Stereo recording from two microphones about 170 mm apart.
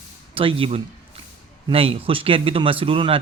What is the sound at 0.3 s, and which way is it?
A man's voice, 30° right (ahead or behind).